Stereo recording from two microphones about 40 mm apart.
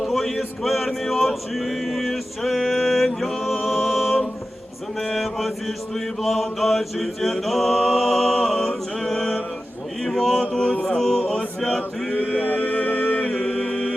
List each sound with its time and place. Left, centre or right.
0.1 s male singing: centre
4.9 s mantra: centre
10.0 s a sound: centre
10.5 s mantra: left
10.8 s a sound: centre
11.3 s chant: centre
12.3 s music: left
13.6 s chant: left